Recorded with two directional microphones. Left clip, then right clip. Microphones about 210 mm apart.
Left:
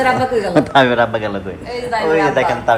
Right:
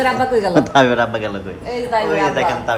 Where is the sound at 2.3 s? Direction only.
5° right (ahead or behind).